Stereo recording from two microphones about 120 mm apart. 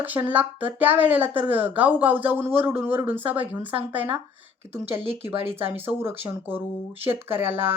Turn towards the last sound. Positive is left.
turn(degrees=-20)  # may be behind; listen again after turning